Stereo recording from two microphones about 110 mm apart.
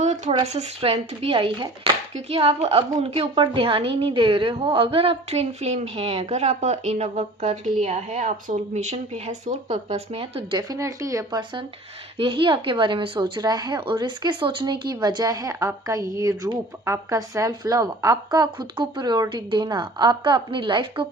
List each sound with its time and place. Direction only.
0.0 s a sound: 90° right
0.5 s a woman's voice: 70° right (ahead or behind)
10.6 s a woman's voice: 30° right (ahead or behind); by 21.1 s 50° right (ahead or behind)